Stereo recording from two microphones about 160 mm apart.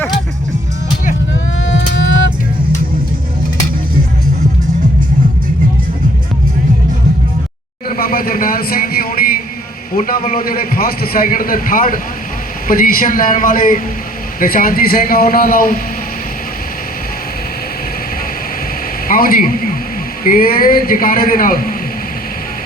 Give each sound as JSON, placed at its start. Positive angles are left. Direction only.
{"t": 7.9, "sound": "a sound", "side_deg": 65}
{"t": 9.9, "sound": "a man's voice", "side_deg": 60}
{"t": 19.0, "sound": "a man's voice", "side_deg": 65}